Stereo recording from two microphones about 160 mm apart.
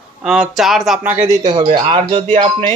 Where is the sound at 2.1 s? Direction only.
35° right (ahead or behind).